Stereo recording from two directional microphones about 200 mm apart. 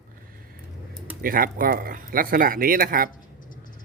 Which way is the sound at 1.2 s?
45° right (ahead or behind).